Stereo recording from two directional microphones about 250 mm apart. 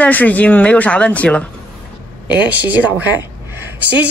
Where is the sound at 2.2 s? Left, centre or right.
Centre.